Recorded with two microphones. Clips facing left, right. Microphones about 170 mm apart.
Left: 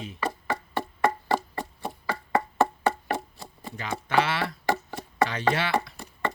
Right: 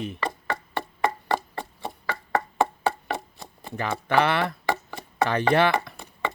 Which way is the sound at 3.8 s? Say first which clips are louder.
Right 3 dB; 60° right (ahead or behind).